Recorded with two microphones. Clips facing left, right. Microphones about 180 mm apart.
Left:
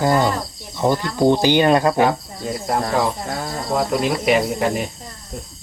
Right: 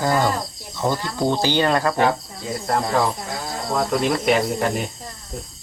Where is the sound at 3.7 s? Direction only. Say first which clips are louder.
Left 1 dB; 5° left (ahead or behind).